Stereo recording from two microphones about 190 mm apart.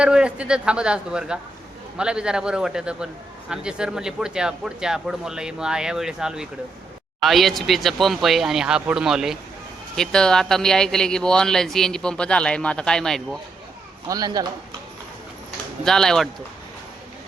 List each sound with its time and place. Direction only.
0.0 s speech: 5° right (ahead or behind)
14.1 s speech: 20° right (ahead or behind)
15.8 s speech: centre (ahead or behind)